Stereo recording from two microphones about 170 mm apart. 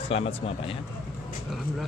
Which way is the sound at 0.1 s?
35° left (ahead or behind).